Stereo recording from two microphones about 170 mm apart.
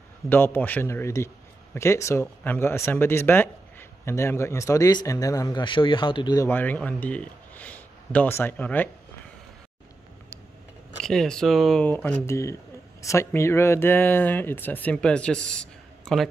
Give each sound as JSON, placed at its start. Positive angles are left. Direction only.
{"t": 0.3, "sound": "speech", "side_deg": 10}
{"t": 11.0, "sound": "speech", "side_deg": 5}